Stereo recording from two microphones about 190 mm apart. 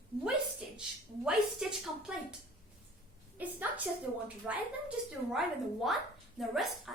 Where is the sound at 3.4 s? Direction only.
10° right (ahead or behind).